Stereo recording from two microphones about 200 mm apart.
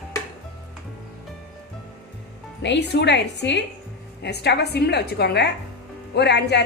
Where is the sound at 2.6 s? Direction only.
60° left (ahead or behind).